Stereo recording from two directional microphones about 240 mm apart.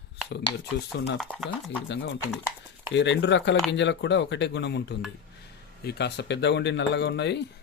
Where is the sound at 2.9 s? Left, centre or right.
Left.